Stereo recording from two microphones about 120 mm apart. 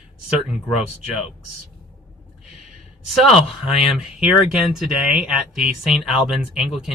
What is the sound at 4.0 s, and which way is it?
Speech, 5° right (ahead or behind).